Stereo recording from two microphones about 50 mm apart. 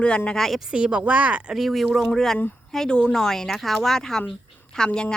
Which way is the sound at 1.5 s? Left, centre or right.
Centre.